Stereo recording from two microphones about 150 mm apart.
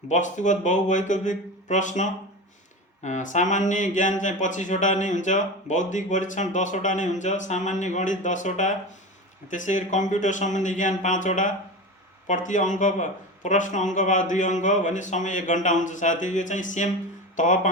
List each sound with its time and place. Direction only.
0.1 s speech: 55° left (ahead or behind)